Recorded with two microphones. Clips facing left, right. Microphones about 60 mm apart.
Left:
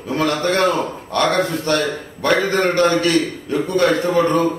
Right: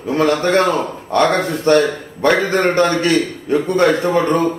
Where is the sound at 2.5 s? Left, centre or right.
Right.